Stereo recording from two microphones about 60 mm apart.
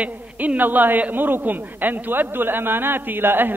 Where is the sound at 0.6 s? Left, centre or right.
Right.